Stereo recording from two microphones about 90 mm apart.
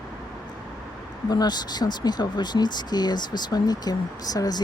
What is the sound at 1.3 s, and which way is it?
Speech, 50° left (ahead or behind).